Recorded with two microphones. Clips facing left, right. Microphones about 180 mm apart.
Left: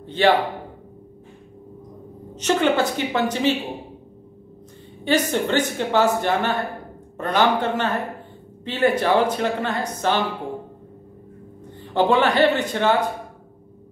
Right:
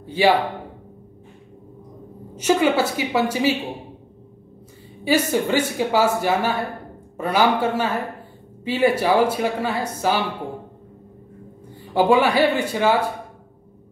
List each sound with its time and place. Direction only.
0.0 s a man's voice: 10° right (ahead or behind)
2.3 s speech: 10° right (ahead or behind)
5.0 s speech: 10° right (ahead or behind)
11.9 s speech: 10° right (ahead or behind)